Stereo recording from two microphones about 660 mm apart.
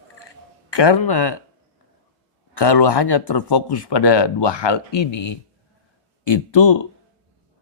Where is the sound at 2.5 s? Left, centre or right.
Left.